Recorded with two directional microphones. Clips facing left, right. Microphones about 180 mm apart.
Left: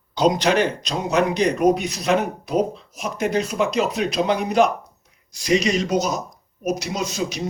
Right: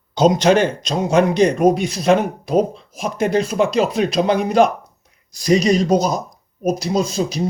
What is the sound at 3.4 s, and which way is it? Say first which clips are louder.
Speech: right 4 dB; 30° right (ahead or behind).